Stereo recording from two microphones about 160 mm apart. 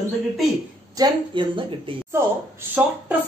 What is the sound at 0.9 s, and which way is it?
A woman's voice, 25° right (ahead or behind).